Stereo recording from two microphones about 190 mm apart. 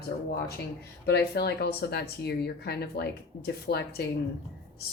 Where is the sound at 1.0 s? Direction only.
60° left (ahead or behind).